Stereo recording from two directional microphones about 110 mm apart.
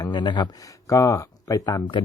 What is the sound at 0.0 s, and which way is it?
Speech, 45° left (ahead or behind).